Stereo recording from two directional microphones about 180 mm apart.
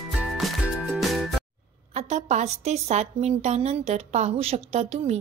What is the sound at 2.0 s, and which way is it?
A woman's voice, 40° right (ahead or behind).